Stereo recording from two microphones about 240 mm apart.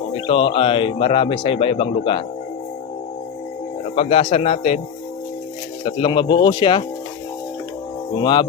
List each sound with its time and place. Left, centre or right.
0.1 s a man's voice: left
3.9 s a man's voice: left
5.8 s a man's voice: centre
8.1 s speech: centre